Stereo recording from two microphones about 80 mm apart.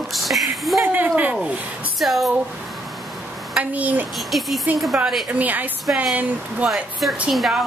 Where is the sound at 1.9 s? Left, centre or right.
Centre.